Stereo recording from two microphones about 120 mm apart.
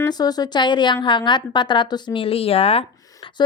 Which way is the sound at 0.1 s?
35° left (ahead or behind).